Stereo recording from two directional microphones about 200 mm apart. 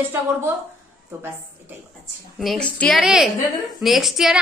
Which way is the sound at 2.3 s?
Centre (ahead or behind).